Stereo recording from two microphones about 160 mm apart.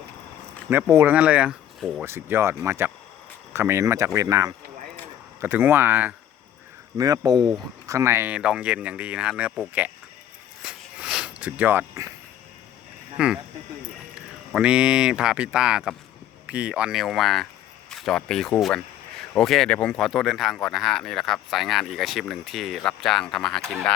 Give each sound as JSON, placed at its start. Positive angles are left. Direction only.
{"t": 0.7, "sound": "speech", "side_deg": -15}
{"t": 6.9, "sound": "speech", "side_deg": -20}
{"t": 11.0, "sound": "sniff", "side_deg": -5}
{"t": 13.1, "sound": "speech", "side_deg": -5}